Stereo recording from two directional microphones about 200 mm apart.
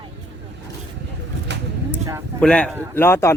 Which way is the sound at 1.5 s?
60° right (ahead or behind).